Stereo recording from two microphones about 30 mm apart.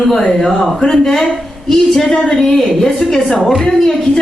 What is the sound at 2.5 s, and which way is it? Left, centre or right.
Speech, centre.